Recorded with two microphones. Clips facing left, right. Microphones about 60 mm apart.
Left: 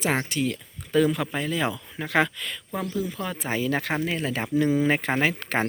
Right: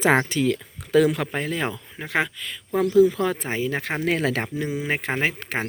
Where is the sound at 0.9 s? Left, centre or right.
Right.